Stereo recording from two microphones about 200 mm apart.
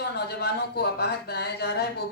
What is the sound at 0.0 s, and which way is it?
Speech, 55° left (ahead or behind).